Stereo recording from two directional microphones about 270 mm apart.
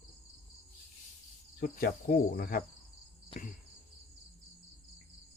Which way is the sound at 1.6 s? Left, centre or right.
Left.